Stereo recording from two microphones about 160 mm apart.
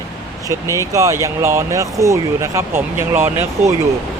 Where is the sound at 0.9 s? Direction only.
20° right (ahead or behind).